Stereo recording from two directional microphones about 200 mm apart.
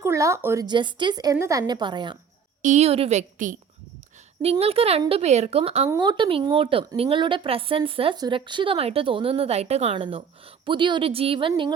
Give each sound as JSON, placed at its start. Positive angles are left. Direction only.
{"t": 0.0, "sound": "speech", "side_deg": -15}
{"t": 2.6, "sound": "a woman's voice", "side_deg": -35}
{"t": 4.5, "sound": "speech", "side_deg": -30}